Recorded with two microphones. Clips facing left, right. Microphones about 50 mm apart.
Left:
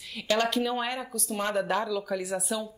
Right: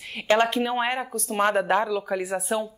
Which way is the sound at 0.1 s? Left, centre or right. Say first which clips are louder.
Right 5 dB; right.